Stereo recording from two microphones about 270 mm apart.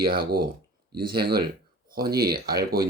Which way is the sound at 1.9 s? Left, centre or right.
Right.